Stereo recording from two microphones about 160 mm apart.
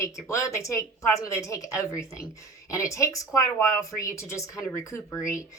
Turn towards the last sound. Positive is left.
turn(degrees=20)  # may be behind; listen again after turning